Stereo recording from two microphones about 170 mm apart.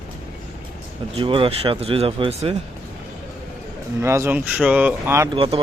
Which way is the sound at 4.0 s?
15° right (ahead or behind).